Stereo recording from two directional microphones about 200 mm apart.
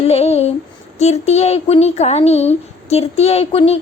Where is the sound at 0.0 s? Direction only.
30° left (ahead or behind).